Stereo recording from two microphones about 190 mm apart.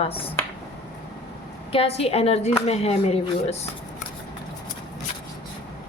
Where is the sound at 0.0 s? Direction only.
30° left (ahead or behind).